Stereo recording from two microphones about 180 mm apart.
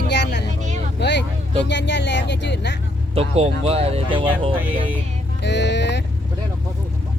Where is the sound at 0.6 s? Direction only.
40° right (ahead or behind).